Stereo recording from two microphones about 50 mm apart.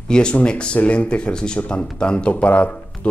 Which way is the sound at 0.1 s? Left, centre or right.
Left.